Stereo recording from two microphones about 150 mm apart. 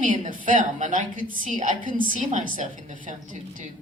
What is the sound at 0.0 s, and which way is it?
Speech, 60° right (ahead or behind).